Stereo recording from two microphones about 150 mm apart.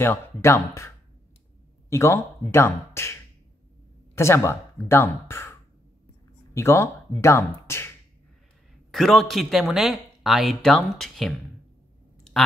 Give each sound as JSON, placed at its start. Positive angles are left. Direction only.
{"t": 0.0, "sound": "speech", "side_deg": 15}
{"t": 8.9, "sound": "speech", "side_deg": 0}